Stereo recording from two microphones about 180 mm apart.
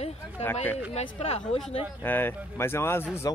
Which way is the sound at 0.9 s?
35° left (ahead or behind).